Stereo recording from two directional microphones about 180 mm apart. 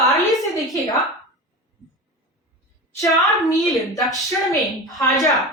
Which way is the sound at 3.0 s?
20° left (ahead or behind).